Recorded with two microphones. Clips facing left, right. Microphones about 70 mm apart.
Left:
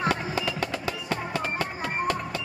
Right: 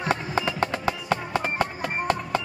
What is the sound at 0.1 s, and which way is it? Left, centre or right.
Music, right.